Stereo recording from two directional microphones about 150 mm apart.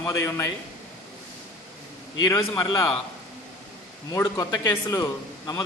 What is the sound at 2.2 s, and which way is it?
Speech, 25° left (ahead or behind).